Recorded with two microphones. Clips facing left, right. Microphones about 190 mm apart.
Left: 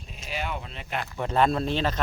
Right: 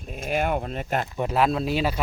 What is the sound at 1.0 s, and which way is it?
Speech, 20° right (ahead or behind).